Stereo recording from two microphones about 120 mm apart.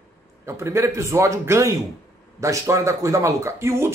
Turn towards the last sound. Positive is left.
turn(degrees=-20)  # may be behind; listen again after turning